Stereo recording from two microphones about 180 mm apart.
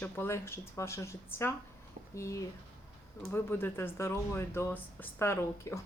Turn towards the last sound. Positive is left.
turn(degrees=15)  # may be behind; listen again after turning